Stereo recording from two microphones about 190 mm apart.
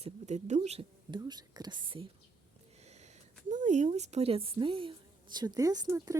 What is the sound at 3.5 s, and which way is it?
Speech, 40° right (ahead or behind).